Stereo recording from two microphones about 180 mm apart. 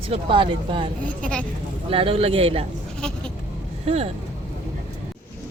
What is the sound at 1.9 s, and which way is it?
Speech, 30° right (ahead or behind).